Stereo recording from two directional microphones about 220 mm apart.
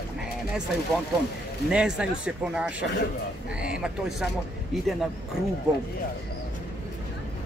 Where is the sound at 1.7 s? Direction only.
5° right (ahead or behind).